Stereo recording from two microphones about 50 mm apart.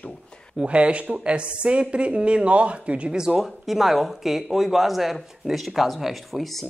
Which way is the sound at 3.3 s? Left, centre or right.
Centre.